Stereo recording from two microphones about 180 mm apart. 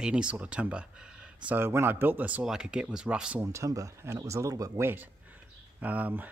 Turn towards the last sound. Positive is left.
turn(degrees=-10)  # may be behind; listen again after turning